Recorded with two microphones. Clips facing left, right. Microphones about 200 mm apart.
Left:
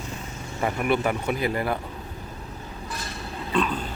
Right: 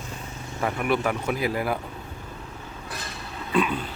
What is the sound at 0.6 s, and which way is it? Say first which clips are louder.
Speech: left 1 dB; centre (ahead or behind).